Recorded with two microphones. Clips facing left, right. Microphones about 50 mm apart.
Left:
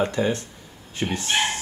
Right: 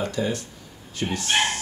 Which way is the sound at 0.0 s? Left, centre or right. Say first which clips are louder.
Left 3 dB; left.